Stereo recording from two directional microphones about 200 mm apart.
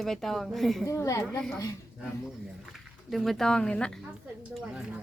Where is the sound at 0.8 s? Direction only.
15° left (ahead or behind).